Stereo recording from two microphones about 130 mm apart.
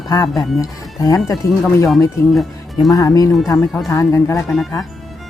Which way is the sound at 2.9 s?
25° left (ahead or behind).